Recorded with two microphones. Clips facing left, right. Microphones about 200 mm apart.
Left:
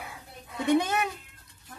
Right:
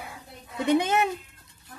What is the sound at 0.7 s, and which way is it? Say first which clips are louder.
Speech: right 2 dB; 20° right (ahead or behind).